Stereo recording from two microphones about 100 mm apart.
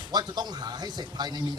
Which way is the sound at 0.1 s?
45° right (ahead or behind).